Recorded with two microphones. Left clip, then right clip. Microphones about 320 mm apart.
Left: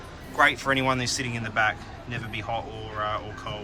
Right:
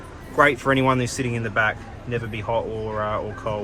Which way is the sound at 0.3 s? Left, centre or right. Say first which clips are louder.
Right 4 dB; centre.